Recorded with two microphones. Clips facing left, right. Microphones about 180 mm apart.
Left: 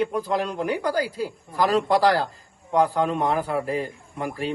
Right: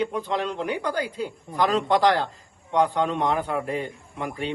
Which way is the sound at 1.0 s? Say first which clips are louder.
Left 1 dB; 5° left (ahead or behind).